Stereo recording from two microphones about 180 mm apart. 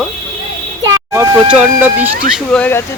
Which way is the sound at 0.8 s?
15° right (ahead or behind).